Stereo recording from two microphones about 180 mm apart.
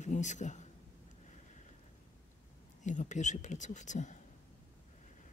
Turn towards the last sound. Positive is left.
turn(degrees=45)  # may be behind; listen again after turning